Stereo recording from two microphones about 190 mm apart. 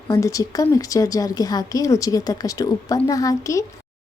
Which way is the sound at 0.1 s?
15° left (ahead or behind).